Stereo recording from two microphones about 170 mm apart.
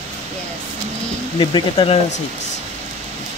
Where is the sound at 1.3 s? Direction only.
30° left (ahead or behind).